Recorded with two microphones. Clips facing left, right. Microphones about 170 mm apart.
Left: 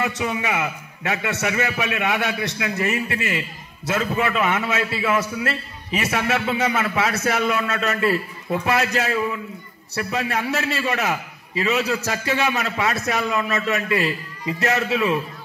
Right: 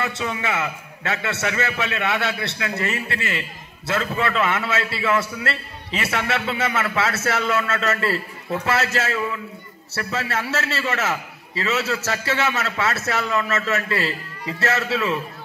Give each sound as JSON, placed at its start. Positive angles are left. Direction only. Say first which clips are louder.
{"t": 0.0, "sound": "a man's voice", "louder": "left 2 dB", "side_deg": 15}